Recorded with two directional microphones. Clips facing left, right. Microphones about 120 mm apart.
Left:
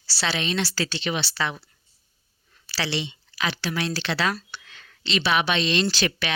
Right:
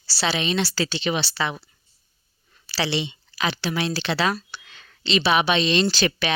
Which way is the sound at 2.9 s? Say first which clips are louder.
Right 3 dB; 20° right (ahead or behind).